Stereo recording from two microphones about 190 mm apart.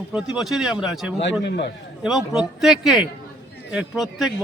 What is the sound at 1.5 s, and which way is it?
Speech, 65° left (ahead or behind).